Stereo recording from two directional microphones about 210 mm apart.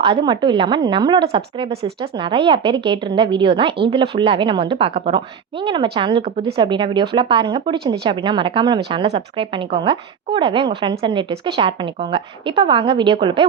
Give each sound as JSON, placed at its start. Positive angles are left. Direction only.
{"t": 0.0, "sound": "a woman's voice", "side_deg": -25}